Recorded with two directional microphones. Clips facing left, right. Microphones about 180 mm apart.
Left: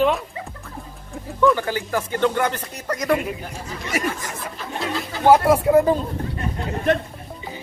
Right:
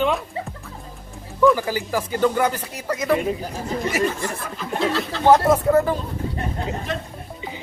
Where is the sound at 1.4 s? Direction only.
5° right (ahead or behind).